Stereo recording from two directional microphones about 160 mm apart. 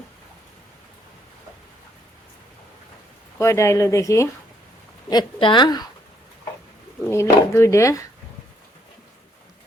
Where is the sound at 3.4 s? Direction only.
20° left (ahead or behind).